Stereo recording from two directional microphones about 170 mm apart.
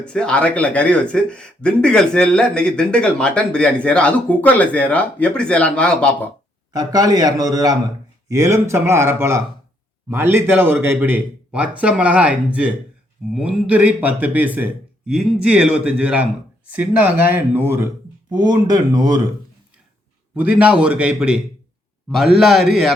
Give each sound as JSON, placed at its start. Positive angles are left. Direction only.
{"t": 0.0, "sound": "speech", "side_deg": 5}
{"t": 6.7, "sound": "a man's voice", "side_deg": -25}
{"t": 18.3, "sound": "a man's voice", "side_deg": -25}
{"t": 20.3, "sound": "a man's voice", "side_deg": -10}